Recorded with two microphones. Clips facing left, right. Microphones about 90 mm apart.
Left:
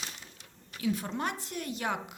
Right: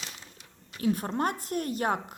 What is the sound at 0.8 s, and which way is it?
A woman's voice, 45° right (ahead or behind).